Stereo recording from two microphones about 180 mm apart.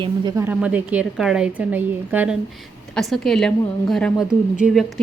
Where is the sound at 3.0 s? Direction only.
Centre (ahead or behind).